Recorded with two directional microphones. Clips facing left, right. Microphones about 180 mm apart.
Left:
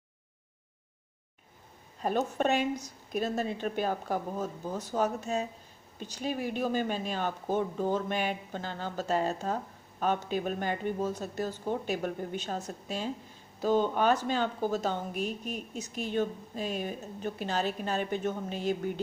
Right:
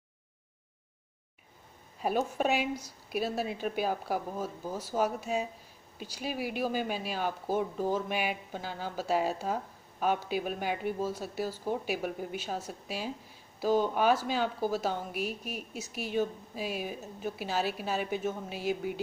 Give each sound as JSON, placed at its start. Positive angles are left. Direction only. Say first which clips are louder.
{"t": 2.0, "sound": "speech", "louder": "left 1 dB", "side_deg": -5}